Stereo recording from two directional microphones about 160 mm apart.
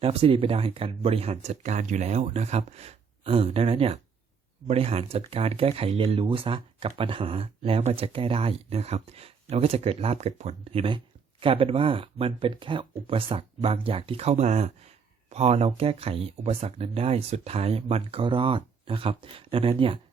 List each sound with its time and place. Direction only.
0.0 s speech: 35° right (ahead or behind)